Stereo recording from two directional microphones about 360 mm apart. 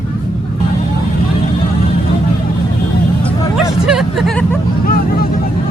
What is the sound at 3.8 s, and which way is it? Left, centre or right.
Hubbub, centre.